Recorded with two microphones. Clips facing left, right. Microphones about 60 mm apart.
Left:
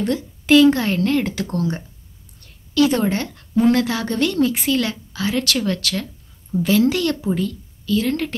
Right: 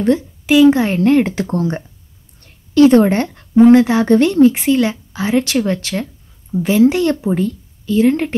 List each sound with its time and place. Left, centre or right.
0.5 s a woman's voice: centre